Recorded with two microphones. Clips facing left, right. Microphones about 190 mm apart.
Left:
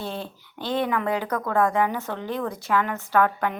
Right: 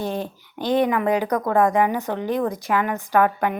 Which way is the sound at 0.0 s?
15° right (ahead or behind).